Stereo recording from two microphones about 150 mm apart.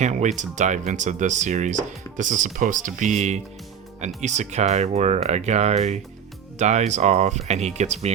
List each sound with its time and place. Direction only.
0.0 s speech: 50° right (ahead or behind)